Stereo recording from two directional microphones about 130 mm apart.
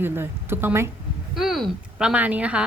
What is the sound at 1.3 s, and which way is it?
A woman's voice, centre (ahead or behind).